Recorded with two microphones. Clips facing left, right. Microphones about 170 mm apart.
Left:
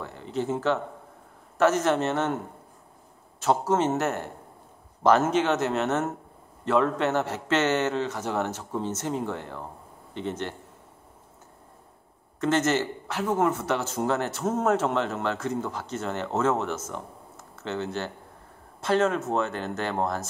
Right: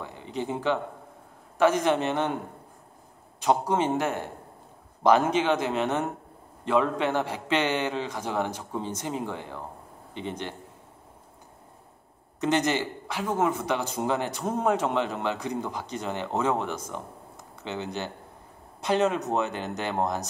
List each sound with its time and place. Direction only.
0.0 s a man's voice: 15° right (ahead or behind)
3.3 s a man's voice: 15° right (ahead or behind)
12.4 s a man's voice: 15° right (ahead or behind)